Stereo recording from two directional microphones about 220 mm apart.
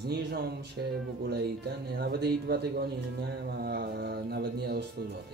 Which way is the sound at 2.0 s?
45° right (ahead or behind).